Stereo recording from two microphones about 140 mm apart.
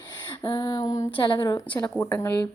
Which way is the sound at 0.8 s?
55° left (ahead or behind).